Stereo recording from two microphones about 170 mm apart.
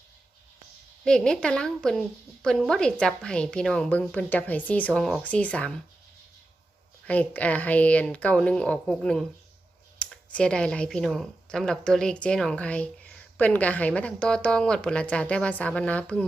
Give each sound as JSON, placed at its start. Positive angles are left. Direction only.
{"t": 1.0, "sound": "a woman's voice", "side_deg": 5}
{"t": 7.1, "sound": "speech", "side_deg": 10}